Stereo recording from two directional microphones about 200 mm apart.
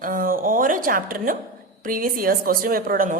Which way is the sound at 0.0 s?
45° right (ahead or behind).